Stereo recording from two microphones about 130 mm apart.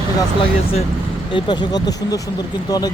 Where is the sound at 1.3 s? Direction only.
30° left (ahead or behind).